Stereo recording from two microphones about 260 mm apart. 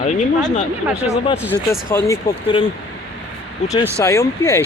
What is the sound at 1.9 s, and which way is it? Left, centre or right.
Speech, centre.